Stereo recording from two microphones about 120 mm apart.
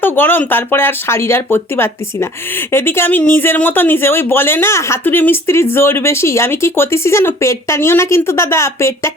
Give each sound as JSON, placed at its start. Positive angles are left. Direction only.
{"t": 0.0, "sound": "speech", "side_deg": 15}